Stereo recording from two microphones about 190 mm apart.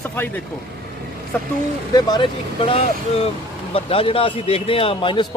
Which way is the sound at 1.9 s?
20° left (ahead or behind).